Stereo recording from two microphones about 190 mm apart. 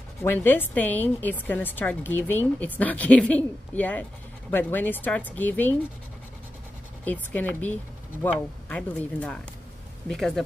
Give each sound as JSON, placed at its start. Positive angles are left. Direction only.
{"t": 0.2, "sound": "a woman's voice", "side_deg": 10}
{"t": 7.1, "sound": "a woman's voice", "side_deg": 10}